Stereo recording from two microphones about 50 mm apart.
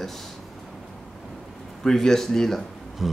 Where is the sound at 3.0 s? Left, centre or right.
Centre.